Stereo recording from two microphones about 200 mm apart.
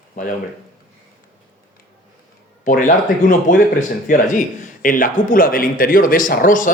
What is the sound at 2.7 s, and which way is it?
Speech, 40° left (ahead or behind).